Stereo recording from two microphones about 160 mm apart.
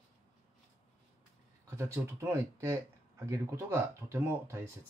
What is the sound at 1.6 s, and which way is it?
Speech, 15° right (ahead or behind).